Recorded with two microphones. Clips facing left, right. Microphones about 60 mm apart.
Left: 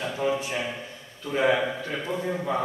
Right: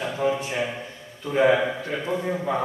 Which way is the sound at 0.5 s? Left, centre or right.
Centre.